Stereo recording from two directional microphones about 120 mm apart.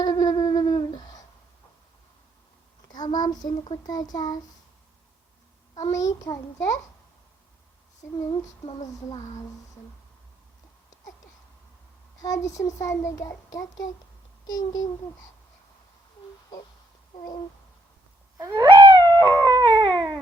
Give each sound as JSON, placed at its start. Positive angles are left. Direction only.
{"t": 0.0, "sound": "a sound", "side_deg": 35}
{"t": 2.9, "sound": "a child's voice", "side_deg": 35}
{"t": 5.7, "sound": "a child's voice", "side_deg": 30}
{"t": 12.2, "sound": "a child's voice", "side_deg": 30}
{"t": 17.2, "sound": "speech", "side_deg": 40}
{"t": 18.3, "sound": "a sound", "side_deg": -25}